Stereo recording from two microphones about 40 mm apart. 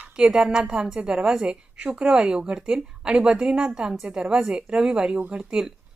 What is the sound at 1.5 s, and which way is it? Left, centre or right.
A woman's voice, right.